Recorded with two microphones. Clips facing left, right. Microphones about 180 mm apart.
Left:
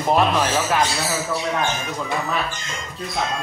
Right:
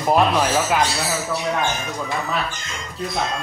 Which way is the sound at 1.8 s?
Centre (ahead or behind).